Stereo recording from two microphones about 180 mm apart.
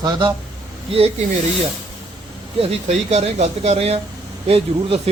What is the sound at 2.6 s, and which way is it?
Speech, 35° right (ahead or behind).